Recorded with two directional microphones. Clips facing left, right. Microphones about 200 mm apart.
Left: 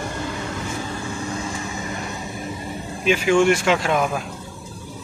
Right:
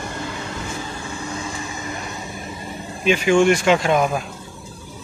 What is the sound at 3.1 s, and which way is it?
Speech, 5° left (ahead or behind).